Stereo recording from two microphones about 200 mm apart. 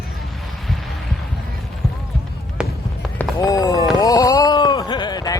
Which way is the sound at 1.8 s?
Centre (ahead or behind).